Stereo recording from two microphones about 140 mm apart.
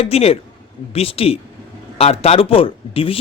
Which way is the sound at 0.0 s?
45° left (ahead or behind).